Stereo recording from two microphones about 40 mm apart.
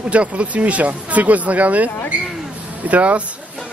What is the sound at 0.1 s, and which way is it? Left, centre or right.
Speech, right.